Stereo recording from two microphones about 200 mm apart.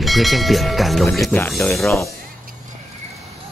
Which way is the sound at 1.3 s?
10° left (ahead or behind).